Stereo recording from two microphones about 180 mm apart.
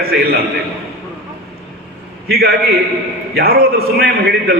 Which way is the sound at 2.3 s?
55° right (ahead or behind).